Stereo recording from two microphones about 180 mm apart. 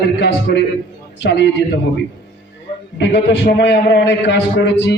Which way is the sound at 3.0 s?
75° left (ahead or behind).